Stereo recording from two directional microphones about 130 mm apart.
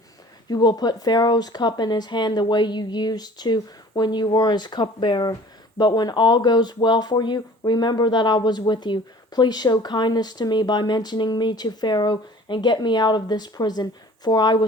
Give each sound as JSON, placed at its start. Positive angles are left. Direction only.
{"t": 0.4, "sound": "speech", "side_deg": 30}